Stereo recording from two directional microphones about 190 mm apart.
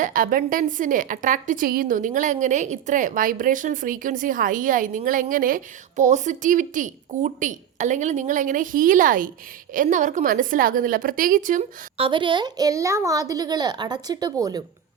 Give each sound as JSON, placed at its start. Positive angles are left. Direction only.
{"t": 0.0, "sound": "a woman's voice", "side_deg": -45}
{"t": 11.9, "sound": "a woman's voice", "side_deg": -25}